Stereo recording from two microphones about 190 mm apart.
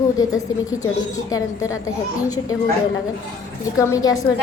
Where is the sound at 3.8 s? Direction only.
15° left (ahead or behind).